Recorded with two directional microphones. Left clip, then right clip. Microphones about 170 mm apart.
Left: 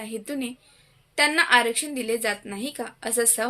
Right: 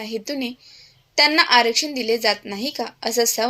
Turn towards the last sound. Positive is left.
turn(degrees=-10)  # may be behind; listen again after turning